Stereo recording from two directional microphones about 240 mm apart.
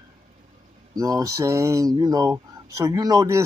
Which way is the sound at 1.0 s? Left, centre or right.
Centre.